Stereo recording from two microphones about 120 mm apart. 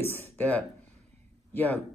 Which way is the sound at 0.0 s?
15° left (ahead or behind).